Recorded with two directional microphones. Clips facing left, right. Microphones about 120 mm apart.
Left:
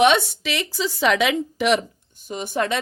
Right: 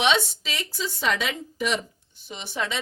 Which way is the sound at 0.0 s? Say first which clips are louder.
Left 6 dB; 55° left (ahead or behind).